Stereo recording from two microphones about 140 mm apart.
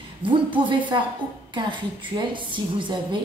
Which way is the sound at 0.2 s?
40° right (ahead or behind).